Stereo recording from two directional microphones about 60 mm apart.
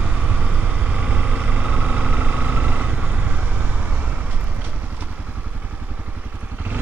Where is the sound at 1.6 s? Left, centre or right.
Centre.